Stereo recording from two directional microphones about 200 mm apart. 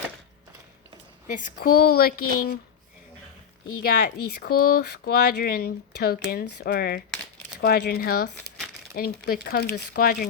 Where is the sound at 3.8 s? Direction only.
50° left (ahead or behind).